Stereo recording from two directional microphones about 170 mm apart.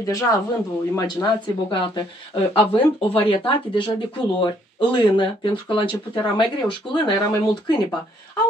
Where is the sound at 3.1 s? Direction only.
30° left (ahead or behind).